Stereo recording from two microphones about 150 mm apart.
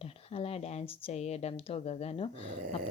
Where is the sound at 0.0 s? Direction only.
40° left (ahead or behind).